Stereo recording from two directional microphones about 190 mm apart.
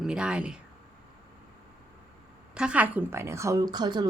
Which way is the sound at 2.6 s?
5° right (ahead or behind).